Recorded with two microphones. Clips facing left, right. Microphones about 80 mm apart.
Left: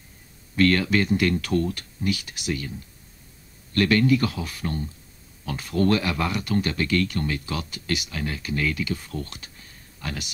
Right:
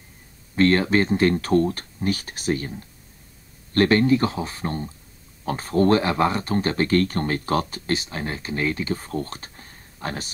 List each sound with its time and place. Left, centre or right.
0.6 s speech: right